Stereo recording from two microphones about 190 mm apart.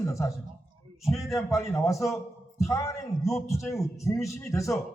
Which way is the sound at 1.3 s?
15° left (ahead or behind).